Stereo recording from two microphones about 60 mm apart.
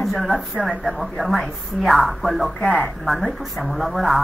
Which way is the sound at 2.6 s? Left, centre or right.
Left.